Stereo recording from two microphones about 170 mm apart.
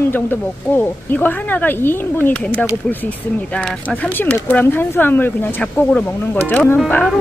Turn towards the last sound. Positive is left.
turn(degrees=10)  # may be behind; listen again after turning